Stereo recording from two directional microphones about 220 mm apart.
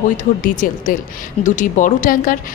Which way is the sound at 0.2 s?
35° left (ahead or behind).